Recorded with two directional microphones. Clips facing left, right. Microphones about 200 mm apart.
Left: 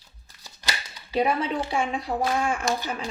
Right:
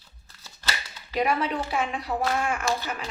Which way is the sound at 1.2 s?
30° left (ahead or behind).